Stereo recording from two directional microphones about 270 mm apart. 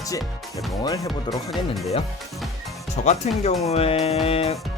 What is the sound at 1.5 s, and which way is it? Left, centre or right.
Speech, centre.